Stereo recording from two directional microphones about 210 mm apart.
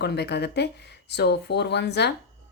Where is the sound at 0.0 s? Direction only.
50° left (ahead or behind).